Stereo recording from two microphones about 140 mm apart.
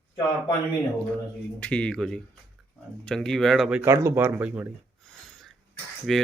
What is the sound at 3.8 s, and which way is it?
Speech, 20° right (ahead or behind).